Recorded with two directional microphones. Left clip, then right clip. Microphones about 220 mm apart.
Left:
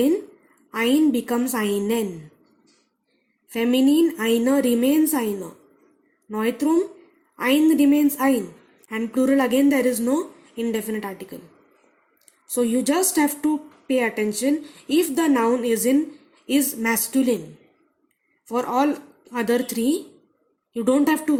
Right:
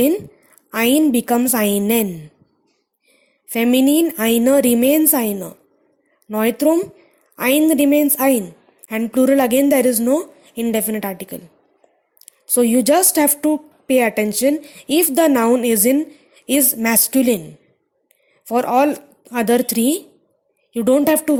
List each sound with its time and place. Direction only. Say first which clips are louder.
0.7 s a woman's voice: right 4 dB; 45° right (ahead or behind)
3.5 s a woman's voice: right 4 dB; 40° right (ahead or behind)
18.4 s a woman's voice: right 6 dB; 40° right (ahead or behind)